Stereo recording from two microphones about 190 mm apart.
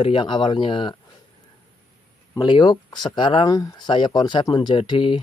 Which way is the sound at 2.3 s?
25° left (ahead or behind).